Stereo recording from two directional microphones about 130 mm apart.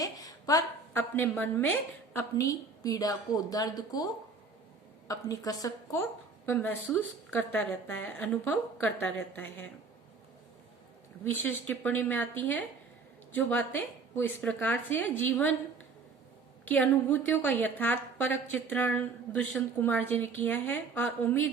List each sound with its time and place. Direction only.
0.0 s a sound: 30° left (ahead or behind)
1.1 s a woman's voice: 15° left (ahead or behind)
2.4 s a woman's voice: 25° left (ahead or behind)
11.3 s a woman's voice: 15° left (ahead or behind)
16.6 s a woman's voice: 15° left (ahead or behind)